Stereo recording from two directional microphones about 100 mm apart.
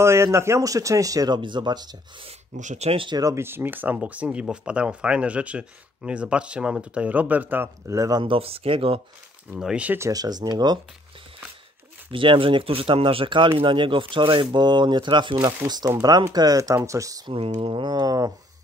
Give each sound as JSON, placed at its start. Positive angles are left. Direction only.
{"t": 0.0, "sound": "a man's voice", "side_deg": -30}
{"t": 1.4, "sound": "speech", "side_deg": -50}
{"t": 2.8, "sound": "speech", "side_deg": -75}
{"t": 3.1, "sound": "a man's voice", "side_deg": -40}
{"t": 3.3, "sound": "speech", "side_deg": -25}
{"t": 7.8, "sound": "a man's voice", "side_deg": -30}
{"t": 8.2, "sound": "speech", "side_deg": -65}
{"t": 9.6, "sound": "speech", "side_deg": -10}
{"t": 9.9, "sound": "speech", "side_deg": -35}
{"t": 12.1, "sound": "speech", "side_deg": -60}
{"t": 15.4, "sound": "a man's voice", "side_deg": -40}
{"t": 17.3, "sound": "speech", "side_deg": -60}